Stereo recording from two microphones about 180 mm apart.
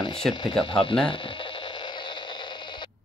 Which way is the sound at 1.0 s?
30° left (ahead or behind).